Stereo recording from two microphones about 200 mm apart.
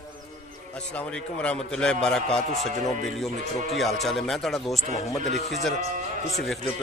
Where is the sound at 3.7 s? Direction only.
Centre (ahead or behind).